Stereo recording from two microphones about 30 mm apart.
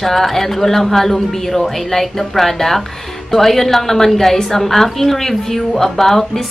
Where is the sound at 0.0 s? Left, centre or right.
Centre.